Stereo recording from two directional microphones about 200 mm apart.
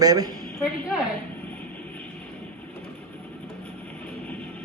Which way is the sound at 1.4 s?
10° left (ahead or behind).